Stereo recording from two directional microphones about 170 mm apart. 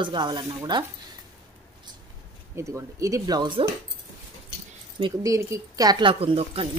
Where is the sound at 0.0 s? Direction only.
25° right (ahead or behind).